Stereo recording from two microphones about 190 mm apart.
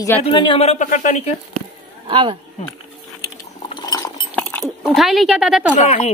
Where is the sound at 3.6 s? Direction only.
20° left (ahead or behind).